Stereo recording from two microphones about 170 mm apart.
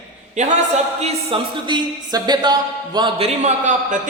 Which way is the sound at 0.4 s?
45° right (ahead or behind).